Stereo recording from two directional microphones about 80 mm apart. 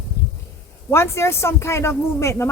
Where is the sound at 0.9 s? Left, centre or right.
Left.